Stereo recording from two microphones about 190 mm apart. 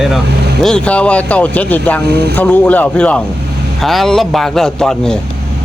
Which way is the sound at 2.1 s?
60° right (ahead or behind).